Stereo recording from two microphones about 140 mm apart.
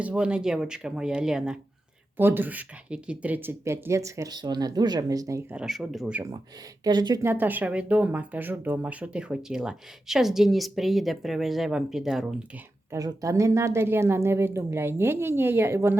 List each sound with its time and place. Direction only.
0.0 s speech: 10° right (ahead or behind)
2.1 s speech: 15° right (ahead or behind)
5.5 s speech: 5° right (ahead or behind)
6.8 s speech: 30° right (ahead or behind)
7.2 s speech: 15° right (ahead or behind)
12.9 s speech: 25° right (ahead or behind)